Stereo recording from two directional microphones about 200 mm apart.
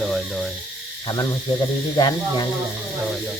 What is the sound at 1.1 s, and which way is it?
Speech, 20° left (ahead or behind).